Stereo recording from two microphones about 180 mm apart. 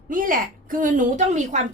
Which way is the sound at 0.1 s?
50° right (ahead or behind).